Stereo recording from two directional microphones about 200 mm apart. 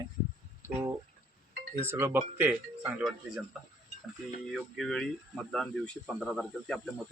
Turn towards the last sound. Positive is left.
turn(degrees=5)  # may be behind; listen again after turning